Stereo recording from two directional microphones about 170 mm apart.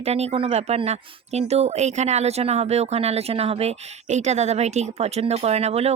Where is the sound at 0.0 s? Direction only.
40° right (ahead or behind).